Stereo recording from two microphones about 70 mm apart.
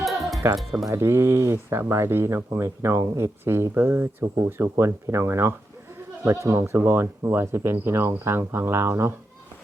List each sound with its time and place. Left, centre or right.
0.0 s music: centre
0.6 s speech: centre
0.9 s speech: right